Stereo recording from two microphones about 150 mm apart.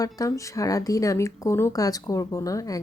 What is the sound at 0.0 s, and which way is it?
Speech, 20° left (ahead or behind).